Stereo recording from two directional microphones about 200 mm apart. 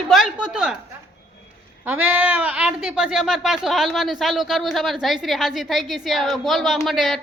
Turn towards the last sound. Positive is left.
turn(degrees=0)  # may be behind; listen again after turning